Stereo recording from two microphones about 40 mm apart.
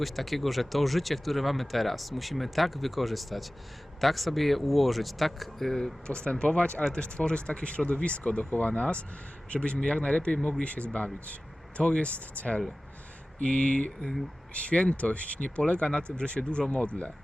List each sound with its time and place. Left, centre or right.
0.0 s speech: centre
6.1 s speech: left